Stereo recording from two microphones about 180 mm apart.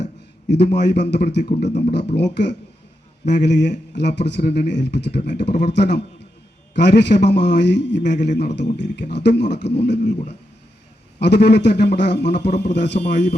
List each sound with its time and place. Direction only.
0.0 s a man's voice: 70° left (ahead or behind)
10.1 s speech: 40° left (ahead or behind)
11.2 s speech: 70° left (ahead or behind)